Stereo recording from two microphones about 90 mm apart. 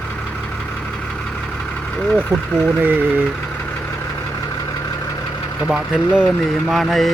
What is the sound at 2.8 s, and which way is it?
Speech, 20° right (ahead or behind).